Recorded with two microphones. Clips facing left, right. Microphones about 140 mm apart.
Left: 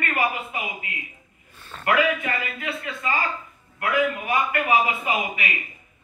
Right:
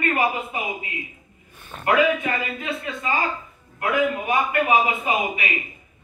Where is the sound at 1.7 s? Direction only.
20° right (ahead or behind).